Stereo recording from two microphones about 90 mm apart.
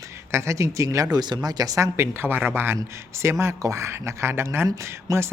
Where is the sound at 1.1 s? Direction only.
50° right (ahead or behind).